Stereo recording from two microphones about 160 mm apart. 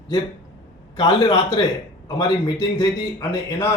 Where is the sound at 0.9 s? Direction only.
25° left (ahead or behind).